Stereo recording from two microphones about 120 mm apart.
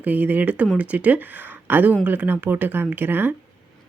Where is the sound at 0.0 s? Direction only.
15° right (ahead or behind).